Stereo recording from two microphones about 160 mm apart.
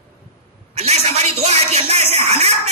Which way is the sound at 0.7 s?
40° right (ahead or behind).